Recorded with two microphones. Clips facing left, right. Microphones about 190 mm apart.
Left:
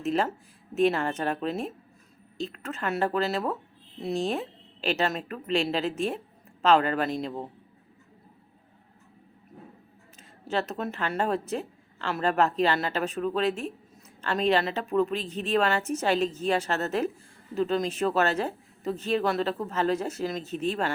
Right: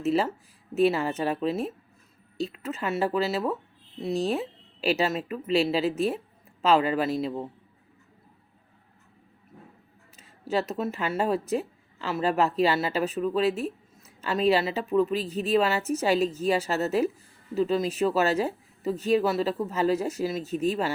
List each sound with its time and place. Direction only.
0.0 s a woman's voice: 5° right (ahead or behind)
10.2 s a woman's voice: 10° right (ahead or behind)